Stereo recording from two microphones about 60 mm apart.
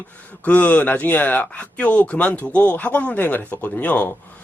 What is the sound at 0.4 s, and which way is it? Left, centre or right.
A man's voice, left.